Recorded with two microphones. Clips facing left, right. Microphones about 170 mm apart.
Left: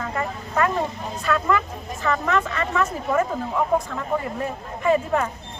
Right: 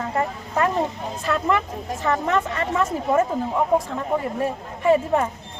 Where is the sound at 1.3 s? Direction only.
25° right (ahead or behind).